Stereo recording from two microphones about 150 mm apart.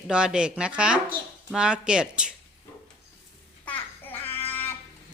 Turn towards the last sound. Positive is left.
turn(degrees=15)  # may be behind; listen again after turning